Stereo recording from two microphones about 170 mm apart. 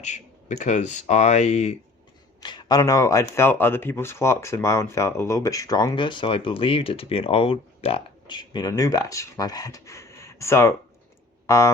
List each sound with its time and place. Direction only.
0.0 s speech: 45° left (ahead or behind)
2.4 s speech: 25° left (ahead or behind)